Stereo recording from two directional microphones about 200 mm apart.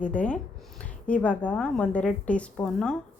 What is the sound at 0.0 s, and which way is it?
Speech, 5° left (ahead or behind).